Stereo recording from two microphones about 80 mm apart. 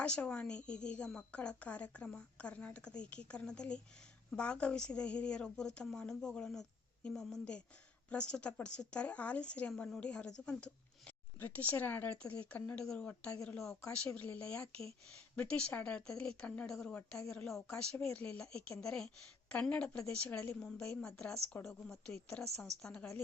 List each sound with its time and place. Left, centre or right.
0.0 s speech: centre
11.3 s speech: left
12.8 s a woman's voice: centre